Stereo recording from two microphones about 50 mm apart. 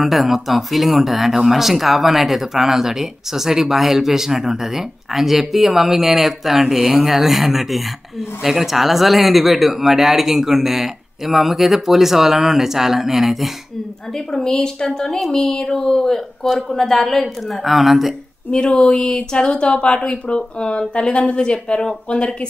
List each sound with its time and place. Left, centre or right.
0.0 s speech: centre
14.1 s a woman's voice: centre
18.5 s speech: centre